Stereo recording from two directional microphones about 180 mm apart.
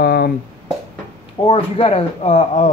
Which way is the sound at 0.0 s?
60° left (ahead or behind).